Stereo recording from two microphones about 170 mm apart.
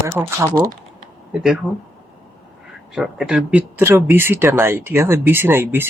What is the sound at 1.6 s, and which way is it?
Speech, centre (ahead or behind).